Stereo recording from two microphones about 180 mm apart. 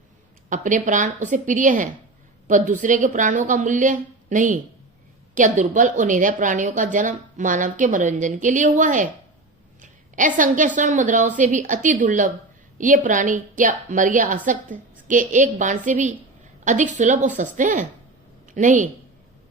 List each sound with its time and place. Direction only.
0.5 s a woman's voice: 45° right (ahead or behind)